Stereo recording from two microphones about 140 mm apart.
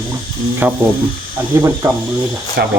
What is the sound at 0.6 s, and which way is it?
Speech, 10° right (ahead or behind).